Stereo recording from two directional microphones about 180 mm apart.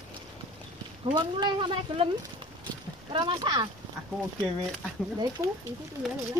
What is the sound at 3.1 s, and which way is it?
Speech, 30° right (ahead or behind).